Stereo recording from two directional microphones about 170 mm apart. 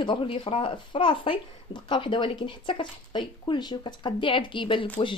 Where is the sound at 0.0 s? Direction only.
30° left (ahead or behind).